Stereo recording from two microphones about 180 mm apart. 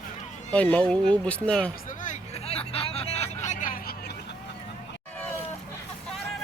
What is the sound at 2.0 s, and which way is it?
Vehicle, 40° left (ahead or behind).